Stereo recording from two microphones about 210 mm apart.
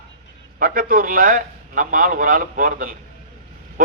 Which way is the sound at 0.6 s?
40° right (ahead or behind).